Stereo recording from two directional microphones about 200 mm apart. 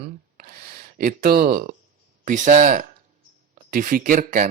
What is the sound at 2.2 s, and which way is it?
Speech, 40° right (ahead or behind).